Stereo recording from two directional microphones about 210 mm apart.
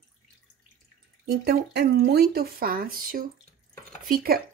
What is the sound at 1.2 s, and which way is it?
Speech, 50° right (ahead or behind).